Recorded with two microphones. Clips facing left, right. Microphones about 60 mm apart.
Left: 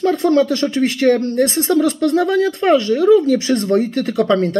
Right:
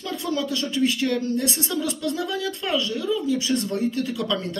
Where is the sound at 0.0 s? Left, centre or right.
Left.